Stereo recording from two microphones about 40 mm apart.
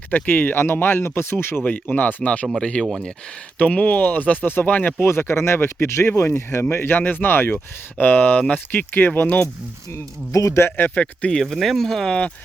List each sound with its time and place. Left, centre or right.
0.1 s speech: left
0.6 s speech: left
1.6 s speech: left
2.6 s speech: left
3.6 s speech: left
5.0 s speech: left
7.5 s speech: left
10.6 s speech: left
11.0 s speech: left
11.4 s speech: centre